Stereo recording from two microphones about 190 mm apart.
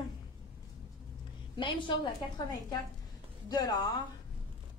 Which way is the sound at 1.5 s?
25° left (ahead or behind).